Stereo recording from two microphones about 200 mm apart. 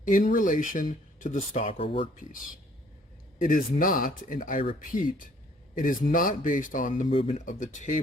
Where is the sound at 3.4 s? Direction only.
45° left (ahead or behind).